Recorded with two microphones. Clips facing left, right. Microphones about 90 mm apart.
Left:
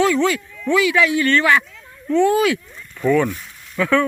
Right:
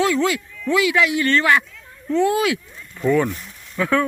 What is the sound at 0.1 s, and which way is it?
Speech, 20° right (ahead or behind).